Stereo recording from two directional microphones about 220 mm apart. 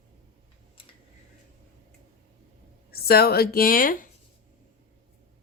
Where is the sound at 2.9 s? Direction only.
45° left (ahead or behind).